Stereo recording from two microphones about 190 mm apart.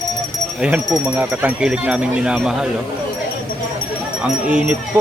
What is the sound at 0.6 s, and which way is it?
Speech, 5° right (ahead or behind).